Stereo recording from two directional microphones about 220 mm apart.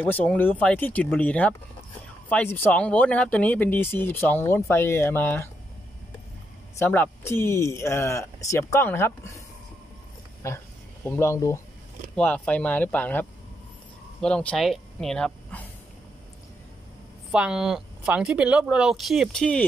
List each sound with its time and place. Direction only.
0.0 s speech: 10° left (ahead or behind)
6.8 s speech: 10° left (ahead or behind)
11.1 s speech: 10° left (ahead or behind)
17.3 s speech: 5° right (ahead or behind)